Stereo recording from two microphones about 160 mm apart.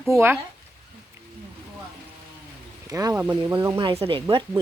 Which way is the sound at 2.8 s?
20° right (ahead or behind).